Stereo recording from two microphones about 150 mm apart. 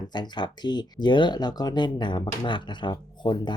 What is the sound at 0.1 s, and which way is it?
Speech, 30° left (ahead or behind).